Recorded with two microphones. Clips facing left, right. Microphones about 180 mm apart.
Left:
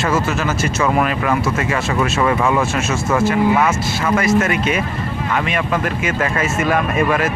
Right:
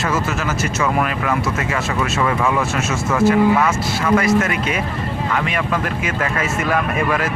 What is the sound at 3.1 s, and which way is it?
Speech, 25° left (ahead or behind).